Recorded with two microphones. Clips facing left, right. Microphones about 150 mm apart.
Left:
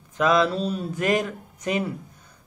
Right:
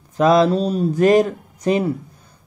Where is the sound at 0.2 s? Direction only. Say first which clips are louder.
Right 6 dB; 35° right (ahead or behind).